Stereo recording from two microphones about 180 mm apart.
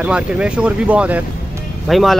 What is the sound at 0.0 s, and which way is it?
Speech, 5° right (ahead or behind).